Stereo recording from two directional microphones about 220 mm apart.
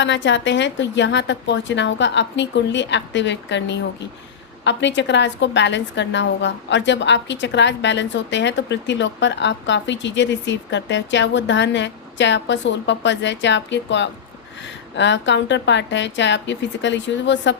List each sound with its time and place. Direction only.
0.0 s a woman's voice: 55° left (ahead or behind)